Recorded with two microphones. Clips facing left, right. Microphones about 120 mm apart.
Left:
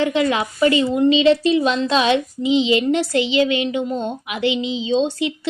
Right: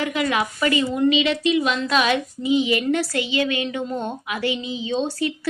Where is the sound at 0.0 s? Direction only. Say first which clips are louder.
Left 4 dB; 25° left (ahead or behind).